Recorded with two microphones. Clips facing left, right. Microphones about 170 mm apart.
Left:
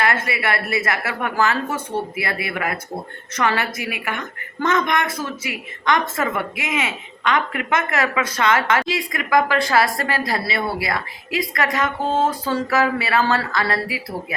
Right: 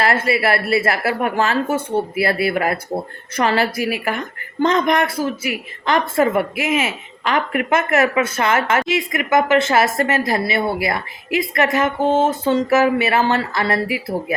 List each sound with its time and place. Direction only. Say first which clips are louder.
0.0 s speech: right 4 dB; 30° right (ahead or behind)